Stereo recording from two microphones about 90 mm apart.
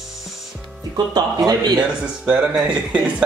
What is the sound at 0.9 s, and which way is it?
Speech, 50° right (ahead or behind).